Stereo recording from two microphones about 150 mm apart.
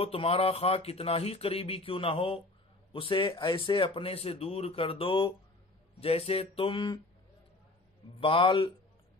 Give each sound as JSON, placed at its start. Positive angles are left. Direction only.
{"t": 0.0, "sound": "speech", "side_deg": 40}
{"t": 8.2, "sound": "speech", "side_deg": 35}